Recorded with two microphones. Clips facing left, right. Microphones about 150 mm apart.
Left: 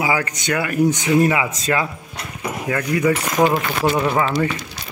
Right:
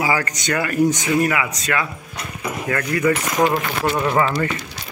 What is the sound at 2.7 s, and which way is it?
Speech, 10° left (ahead or behind).